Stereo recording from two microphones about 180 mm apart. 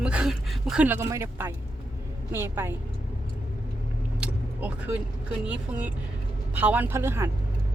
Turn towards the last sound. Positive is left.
turn(degrees=-15)  # may be behind; listen again after turning